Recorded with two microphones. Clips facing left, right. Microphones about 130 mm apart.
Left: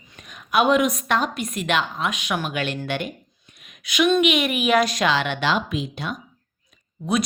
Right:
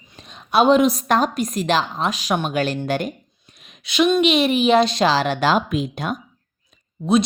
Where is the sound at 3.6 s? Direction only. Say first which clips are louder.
Right 3 dB; 30° right (ahead or behind).